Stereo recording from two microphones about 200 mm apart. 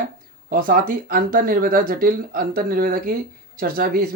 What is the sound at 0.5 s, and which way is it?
Speech, 45° right (ahead or behind).